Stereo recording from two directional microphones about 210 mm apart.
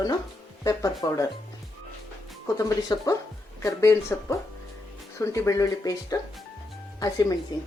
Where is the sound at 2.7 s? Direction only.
20° left (ahead or behind).